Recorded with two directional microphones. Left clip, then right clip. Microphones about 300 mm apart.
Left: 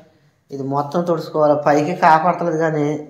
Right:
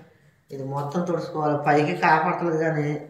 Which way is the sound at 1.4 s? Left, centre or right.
Centre.